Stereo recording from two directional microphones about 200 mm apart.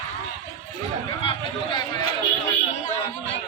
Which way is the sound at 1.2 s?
25° left (ahead or behind).